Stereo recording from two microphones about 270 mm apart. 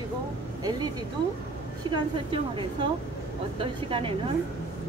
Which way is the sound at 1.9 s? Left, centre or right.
Centre.